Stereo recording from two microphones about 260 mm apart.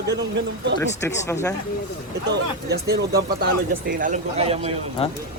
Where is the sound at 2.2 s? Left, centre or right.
Right.